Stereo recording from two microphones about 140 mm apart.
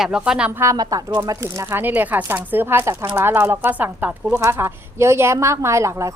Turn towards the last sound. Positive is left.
turn(degrees=-20)  # may be behind; listen again after turning